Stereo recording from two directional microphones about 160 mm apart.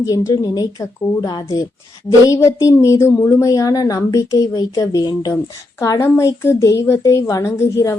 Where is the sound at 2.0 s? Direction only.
20° left (ahead or behind).